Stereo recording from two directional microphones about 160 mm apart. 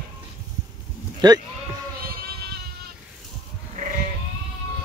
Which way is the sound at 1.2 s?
25° right (ahead or behind).